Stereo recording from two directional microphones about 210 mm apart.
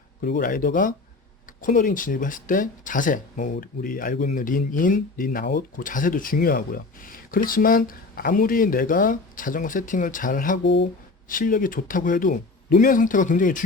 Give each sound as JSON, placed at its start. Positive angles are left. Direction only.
{"t": 0.2, "sound": "speech", "side_deg": 45}
{"t": 10.6, "sound": "speech", "side_deg": 55}
{"t": 11.3, "sound": "speech", "side_deg": 40}